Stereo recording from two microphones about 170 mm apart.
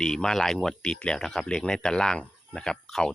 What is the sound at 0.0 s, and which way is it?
Speech, 5° left (ahead or behind).